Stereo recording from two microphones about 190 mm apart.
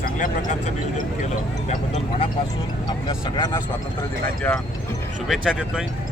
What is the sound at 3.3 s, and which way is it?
Speech, 20° left (ahead or behind).